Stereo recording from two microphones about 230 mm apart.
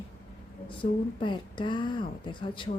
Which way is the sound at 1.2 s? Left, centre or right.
Centre.